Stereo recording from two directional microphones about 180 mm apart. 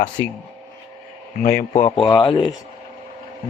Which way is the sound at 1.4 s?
50° left (ahead or behind).